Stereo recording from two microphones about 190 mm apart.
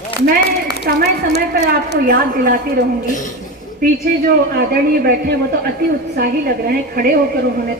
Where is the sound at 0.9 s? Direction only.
50° right (ahead or behind).